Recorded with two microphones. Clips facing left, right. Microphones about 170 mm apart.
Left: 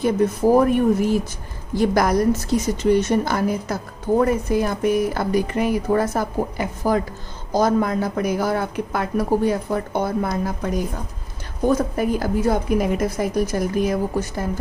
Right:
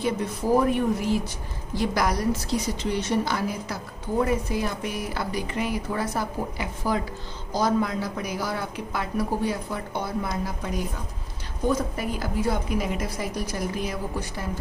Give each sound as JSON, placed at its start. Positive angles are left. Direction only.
{"t": 0.0, "sound": "a woman's voice", "side_deg": 45}